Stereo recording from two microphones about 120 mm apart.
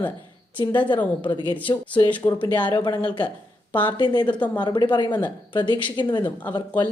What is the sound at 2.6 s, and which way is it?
Speech, 40° left (ahead or behind).